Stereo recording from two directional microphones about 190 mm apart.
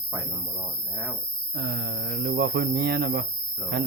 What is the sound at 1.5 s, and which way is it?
Speech, 60° right (ahead or behind).